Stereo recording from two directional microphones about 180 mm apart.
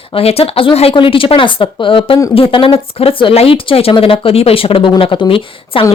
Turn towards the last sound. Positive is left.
turn(degrees=30)  # may be behind; listen again after turning